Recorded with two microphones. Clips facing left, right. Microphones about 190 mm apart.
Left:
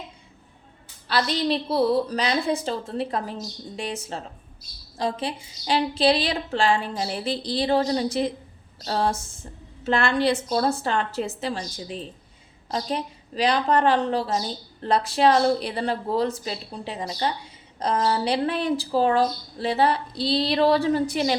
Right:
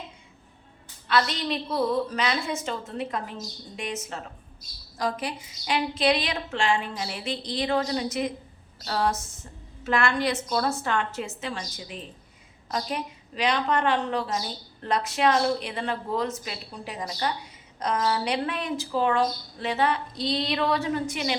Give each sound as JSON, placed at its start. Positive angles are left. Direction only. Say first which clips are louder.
{"t": 1.0, "sound": "a woman's voice", "louder": "left 2 dB", "side_deg": 35}